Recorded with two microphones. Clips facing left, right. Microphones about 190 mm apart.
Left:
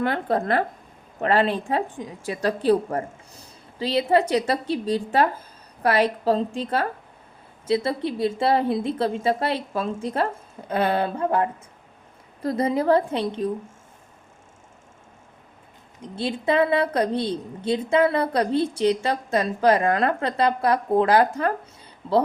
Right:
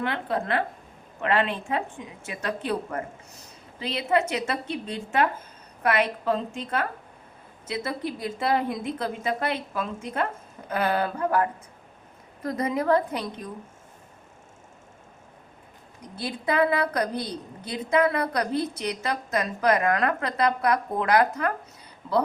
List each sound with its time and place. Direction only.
0.0 s a woman's voice: 40° left (ahead or behind)
16.0 s a woman's voice: 25° left (ahead or behind)